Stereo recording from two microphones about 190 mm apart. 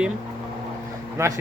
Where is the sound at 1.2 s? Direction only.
15° right (ahead or behind).